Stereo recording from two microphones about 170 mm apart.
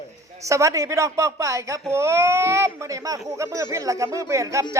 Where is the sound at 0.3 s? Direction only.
20° right (ahead or behind).